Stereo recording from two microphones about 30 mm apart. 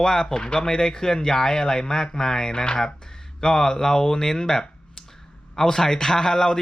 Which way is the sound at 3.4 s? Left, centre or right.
Centre.